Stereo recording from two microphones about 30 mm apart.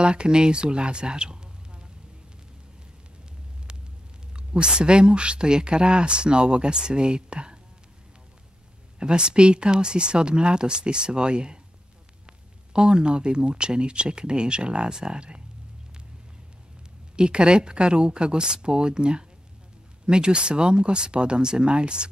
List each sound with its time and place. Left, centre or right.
0.0 s speech: right
4.4 s speech: right
9.0 s speech: right
12.7 s speech: right
17.1 s speech: right